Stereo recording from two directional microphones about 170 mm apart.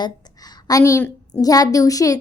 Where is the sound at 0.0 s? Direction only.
25° left (ahead or behind).